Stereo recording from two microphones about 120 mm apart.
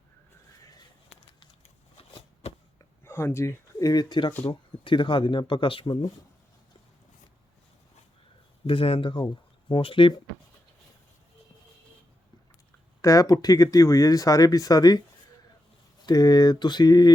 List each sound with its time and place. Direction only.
3.0 s speech: 20° left (ahead or behind); by 6.1 s 40° left (ahead or behind)
8.6 s speech: 50° left (ahead or behind)
13.0 s speech: 30° left (ahead or behind)
16.0 s speech: 35° left (ahead or behind)